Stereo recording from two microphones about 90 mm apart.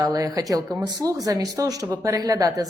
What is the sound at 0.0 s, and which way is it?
A woman's voice, 40° right (ahead or behind).